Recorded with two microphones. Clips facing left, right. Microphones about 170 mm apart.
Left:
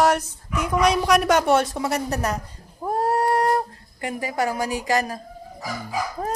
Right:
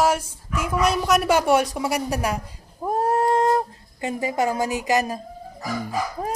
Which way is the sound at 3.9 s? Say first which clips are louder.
Right 2 dB; 25° right (ahead or behind).